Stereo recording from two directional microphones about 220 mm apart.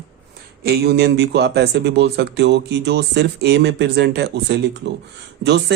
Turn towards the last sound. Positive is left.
turn(degrees=-50)  # may be behind; listen again after turning